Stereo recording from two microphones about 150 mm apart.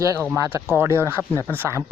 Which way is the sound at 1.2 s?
10° left (ahead or behind).